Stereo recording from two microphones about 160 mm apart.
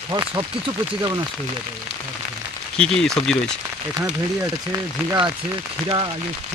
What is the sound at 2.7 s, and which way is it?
Speech, 5° left (ahead or behind).